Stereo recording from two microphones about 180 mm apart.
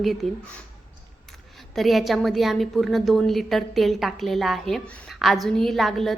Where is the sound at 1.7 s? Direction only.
Centre (ahead or behind).